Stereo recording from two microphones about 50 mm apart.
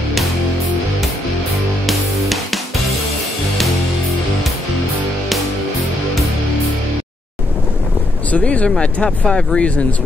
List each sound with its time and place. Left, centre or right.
1.9 s music: centre
8.3 s speech: left